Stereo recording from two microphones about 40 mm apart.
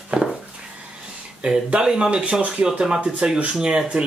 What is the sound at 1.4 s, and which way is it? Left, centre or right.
Speech, right.